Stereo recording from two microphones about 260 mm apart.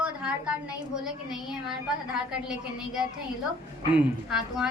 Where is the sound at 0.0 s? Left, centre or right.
Centre.